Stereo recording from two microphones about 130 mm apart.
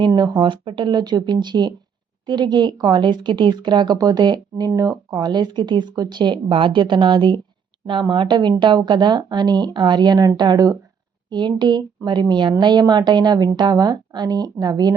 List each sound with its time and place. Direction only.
0.1 s speech: 35° right (ahead or behind)